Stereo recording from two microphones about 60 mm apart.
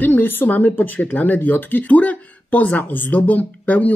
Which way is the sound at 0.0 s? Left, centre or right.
Left.